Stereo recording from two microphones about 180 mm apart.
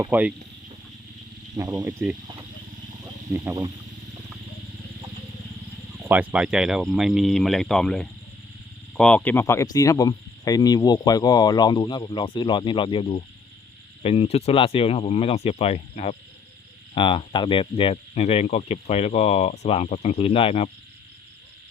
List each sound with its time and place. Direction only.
0.1 s speech: 10° right (ahead or behind)
1.5 s speech: 20° right (ahead or behind)
3.3 s speech: 20° right (ahead or behind)
6.1 s speech: 10° right (ahead or behind); by 20.7 s 30° left (ahead or behind)